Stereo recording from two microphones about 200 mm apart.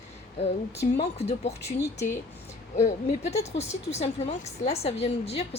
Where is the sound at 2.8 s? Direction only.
35° left (ahead or behind).